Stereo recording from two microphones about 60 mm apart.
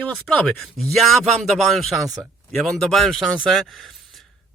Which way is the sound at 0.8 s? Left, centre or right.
Centre.